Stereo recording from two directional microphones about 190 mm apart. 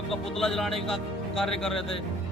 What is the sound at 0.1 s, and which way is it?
A man's voice, centre (ahead or behind).